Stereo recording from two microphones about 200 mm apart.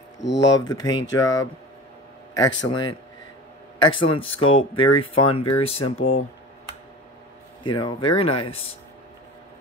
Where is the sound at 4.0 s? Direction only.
25° left (ahead or behind).